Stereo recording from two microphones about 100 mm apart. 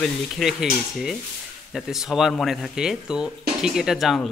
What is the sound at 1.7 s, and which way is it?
Speech, 5° right (ahead or behind).